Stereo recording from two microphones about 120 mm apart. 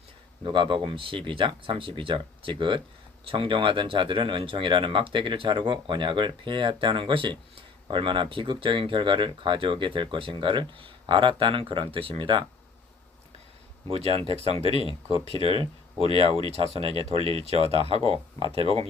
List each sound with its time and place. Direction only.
0.4 s speech: 45° right (ahead or behind)
13.9 s speech: 55° right (ahead or behind)
16.0 s speech: 50° right (ahead or behind)